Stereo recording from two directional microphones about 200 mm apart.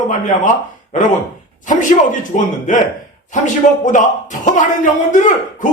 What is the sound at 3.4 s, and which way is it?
Speech, 40° left (ahead or behind).